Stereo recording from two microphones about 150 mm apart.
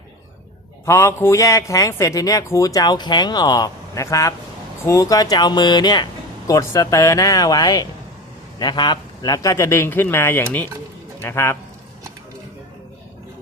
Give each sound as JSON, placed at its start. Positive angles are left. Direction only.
{"t": 0.9, "sound": "a man's voice", "side_deg": 20}